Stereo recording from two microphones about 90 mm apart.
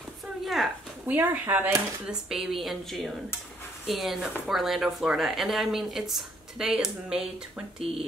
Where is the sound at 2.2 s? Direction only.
5° right (ahead or behind).